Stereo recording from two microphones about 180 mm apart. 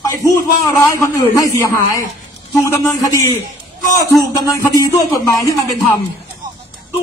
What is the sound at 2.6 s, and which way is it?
Speech, 15° left (ahead or behind).